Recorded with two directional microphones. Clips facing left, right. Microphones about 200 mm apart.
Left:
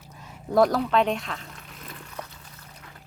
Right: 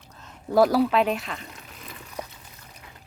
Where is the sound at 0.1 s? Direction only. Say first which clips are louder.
Left 2 dB; 10° left (ahead or behind).